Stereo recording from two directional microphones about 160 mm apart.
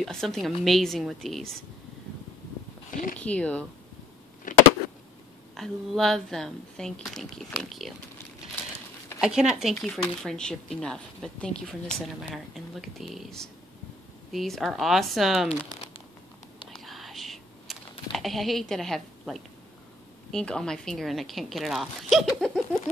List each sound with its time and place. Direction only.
0.0 s a woman's voice: 5° left (ahead or behind)
2.9 s a sound: 55° left (ahead or behind)
3.2 s speech: 10° left (ahead or behind)
4.5 s a sound: 55° left (ahead or behind)
5.6 s a woman's voice: centre (ahead or behind)
9.2 s a woman's voice: 5° right (ahead or behind)
16.8 s whispering: centre (ahead or behind)
18.1 s a woman's voice: centre (ahead or behind)